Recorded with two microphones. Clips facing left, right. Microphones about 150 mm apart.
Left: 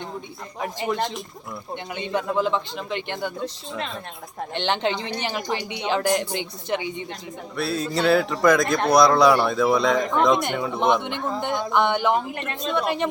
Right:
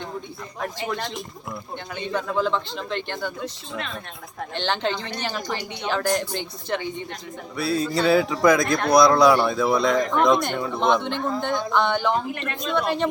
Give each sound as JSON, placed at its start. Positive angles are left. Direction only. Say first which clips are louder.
{"t": 0.6, "sound": "speech", "louder": "left 3 dB", "side_deg": 15}
{"t": 4.5, "sound": "speech", "louder": "left 1 dB", "side_deg": 20}
{"t": 7.5, "sound": "a man's voice", "louder": "right 2 dB", "side_deg": 0}